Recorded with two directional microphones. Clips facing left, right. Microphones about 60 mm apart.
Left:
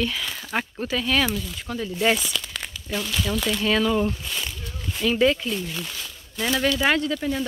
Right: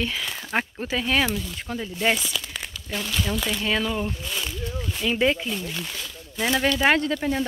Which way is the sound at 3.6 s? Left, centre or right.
Centre.